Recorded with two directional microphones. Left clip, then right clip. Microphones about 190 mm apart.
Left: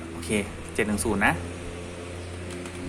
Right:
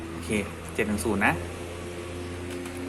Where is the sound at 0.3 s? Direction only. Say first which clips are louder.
Left 2 dB; 5° left (ahead or behind).